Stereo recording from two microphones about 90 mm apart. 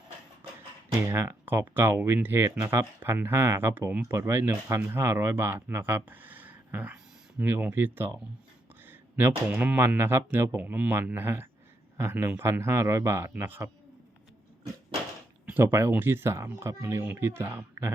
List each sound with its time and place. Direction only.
1.0 s speech: 30° right (ahead or behind)
8.9 s a sound: 25° right (ahead or behind)
9.5 s speech: 20° right (ahead or behind)
15.5 s speech: 25° right (ahead or behind)